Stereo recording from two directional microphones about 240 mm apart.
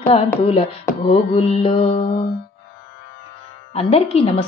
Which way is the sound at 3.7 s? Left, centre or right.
Left.